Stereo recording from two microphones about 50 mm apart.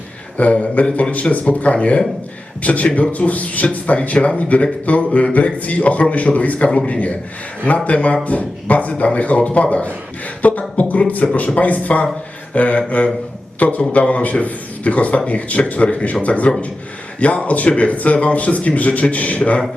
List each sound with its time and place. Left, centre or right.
0.3 s a man's voice: left
10.8 s a sound: left
11.3 s a man's voice: left